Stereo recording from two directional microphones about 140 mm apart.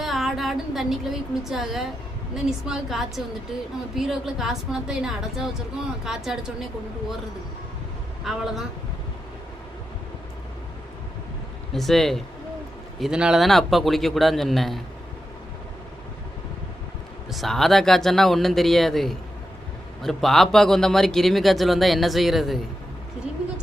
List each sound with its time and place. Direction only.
0.0 s a woman's voice: centre (ahead or behind)
8.2 s speech: 5° right (ahead or behind)
11.7 s speech: centre (ahead or behind)
17.2 s speech: centre (ahead or behind)